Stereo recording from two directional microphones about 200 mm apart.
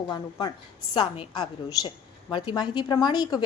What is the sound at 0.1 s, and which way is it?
A woman's voice, 20° left (ahead or behind).